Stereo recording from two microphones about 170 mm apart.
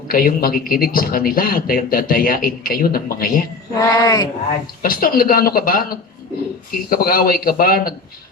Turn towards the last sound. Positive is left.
turn(degrees=60)  # may be behind; listen again after turning